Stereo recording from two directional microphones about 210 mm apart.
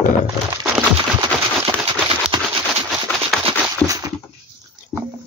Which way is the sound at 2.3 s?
25° right (ahead or behind).